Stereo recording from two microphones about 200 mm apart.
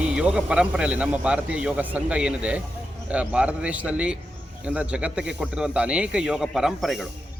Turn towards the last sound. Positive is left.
turn(degrees=0)  # may be behind; listen again after turning